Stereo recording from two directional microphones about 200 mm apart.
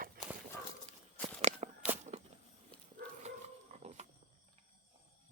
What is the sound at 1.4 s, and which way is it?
Walk, 35° right (ahead or behind).